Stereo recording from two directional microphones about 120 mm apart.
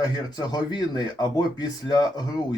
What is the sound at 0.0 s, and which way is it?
Speech, 35° left (ahead or behind).